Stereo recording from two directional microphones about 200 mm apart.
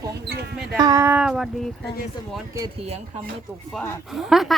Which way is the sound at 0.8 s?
15° right (ahead or behind).